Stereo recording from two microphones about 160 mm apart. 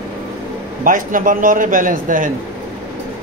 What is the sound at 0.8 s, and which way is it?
A man's voice, 55° right (ahead or behind).